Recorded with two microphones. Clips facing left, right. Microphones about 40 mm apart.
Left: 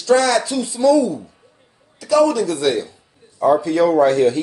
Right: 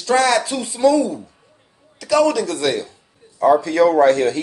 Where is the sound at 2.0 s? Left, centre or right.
Right.